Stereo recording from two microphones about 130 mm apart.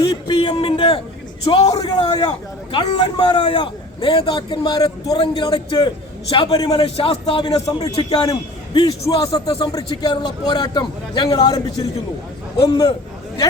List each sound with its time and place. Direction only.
0.0 s a man's voice: 35° left (ahead or behind)
2.0 s a man's voice: 35° left (ahead or behind)
7.7 s a man's voice: 30° left (ahead or behind)
7.9 s a man's voice: 45° left (ahead or behind)
8.3 s a man's voice: 30° left (ahead or behind)
12.6 s a man's voice: 30° left (ahead or behind)